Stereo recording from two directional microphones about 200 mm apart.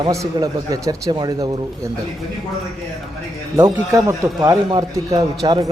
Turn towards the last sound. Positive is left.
turn(degrees=-20)  # may be behind; listen again after turning